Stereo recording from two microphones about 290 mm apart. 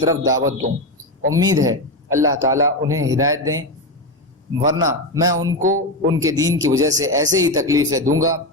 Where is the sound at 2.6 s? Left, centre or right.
Right.